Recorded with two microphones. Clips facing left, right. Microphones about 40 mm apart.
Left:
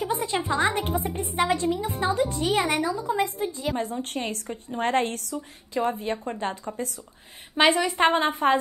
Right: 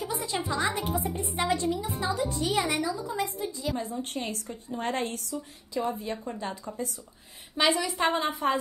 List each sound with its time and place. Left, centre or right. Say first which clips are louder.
0.0 s a woman's voice: left 5 dB; left